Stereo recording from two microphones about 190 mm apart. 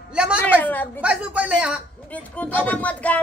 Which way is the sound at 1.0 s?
5° right (ahead or behind).